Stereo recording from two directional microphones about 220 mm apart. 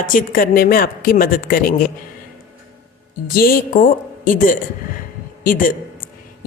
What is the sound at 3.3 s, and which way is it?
A woman's voice, 40° left (ahead or behind).